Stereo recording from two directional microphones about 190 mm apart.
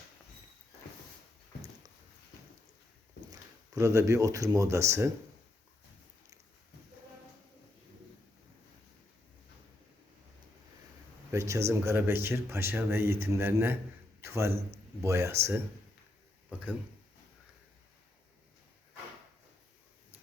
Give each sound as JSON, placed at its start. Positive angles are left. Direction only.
{"t": 3.8, "sound": "speech", "side_deg": -15}
{"t": 11.3, "sound": "a man's voice", "side_deg": -15}